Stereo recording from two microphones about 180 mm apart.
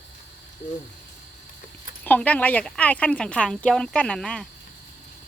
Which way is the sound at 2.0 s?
10° left (ahead or behind).